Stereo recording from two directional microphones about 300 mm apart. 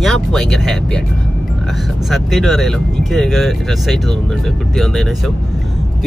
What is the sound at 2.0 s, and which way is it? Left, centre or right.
Speech, centre.